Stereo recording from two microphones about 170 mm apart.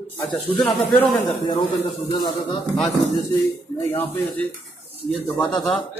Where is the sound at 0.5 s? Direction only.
10° left (ahead or behind).